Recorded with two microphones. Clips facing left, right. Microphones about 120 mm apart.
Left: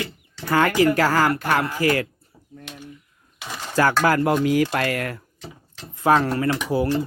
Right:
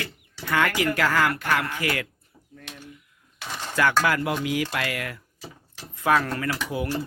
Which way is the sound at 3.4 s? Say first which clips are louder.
Left 1 dB; 5° left (ahead or behind).